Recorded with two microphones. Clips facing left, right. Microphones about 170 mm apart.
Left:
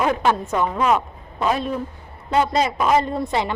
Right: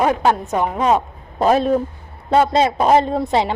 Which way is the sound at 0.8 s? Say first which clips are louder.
Right 3 dB; 35° right (ahead or behind).